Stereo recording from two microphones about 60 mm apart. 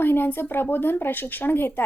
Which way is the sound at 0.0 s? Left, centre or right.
Left.